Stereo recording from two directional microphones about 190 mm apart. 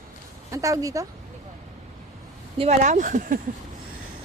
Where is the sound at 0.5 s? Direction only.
15° right (ahead or behind).